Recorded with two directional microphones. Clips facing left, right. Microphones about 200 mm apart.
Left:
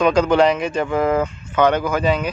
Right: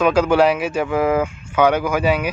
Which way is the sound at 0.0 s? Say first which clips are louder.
Even; 5° right (ahead or behind).